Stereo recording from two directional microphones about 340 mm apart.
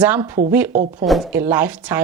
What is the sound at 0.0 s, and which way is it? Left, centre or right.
Speech, centre.